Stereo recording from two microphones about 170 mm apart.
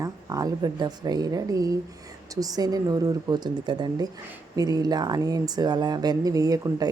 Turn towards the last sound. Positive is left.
turn(degrees=-20)  # may be behind; listen again after turning